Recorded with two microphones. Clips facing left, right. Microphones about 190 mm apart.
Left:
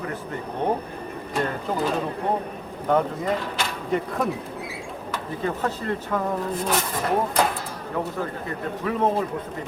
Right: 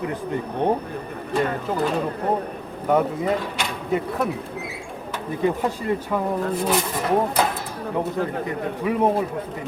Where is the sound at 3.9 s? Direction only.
5° right (ahead or behind).